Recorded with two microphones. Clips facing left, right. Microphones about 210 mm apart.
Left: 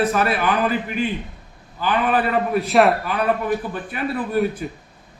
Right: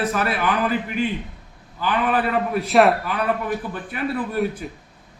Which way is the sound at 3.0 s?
25° left (ahead or behind).